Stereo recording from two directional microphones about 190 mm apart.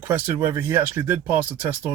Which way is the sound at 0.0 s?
10° right (ahead or behind).